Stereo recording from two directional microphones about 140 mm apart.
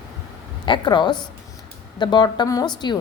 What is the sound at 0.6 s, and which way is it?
A woman's voice, 35° left (ahead or behind).